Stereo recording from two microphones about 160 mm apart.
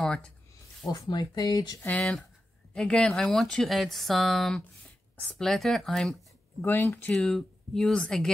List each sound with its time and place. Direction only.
0.0 s speech: 5° left (ahead or behind)
1.0 s speech: 25° left (ahead or behind)
1.8 s speech: 10° left (ahead or behind)